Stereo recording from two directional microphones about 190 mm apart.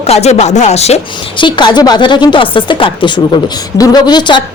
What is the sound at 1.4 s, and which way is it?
Speech, 25° left (ahead or behind).